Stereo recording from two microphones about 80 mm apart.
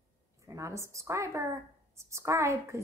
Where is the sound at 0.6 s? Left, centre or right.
Right.